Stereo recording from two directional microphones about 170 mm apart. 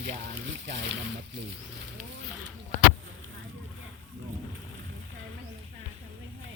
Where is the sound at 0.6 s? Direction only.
90° right.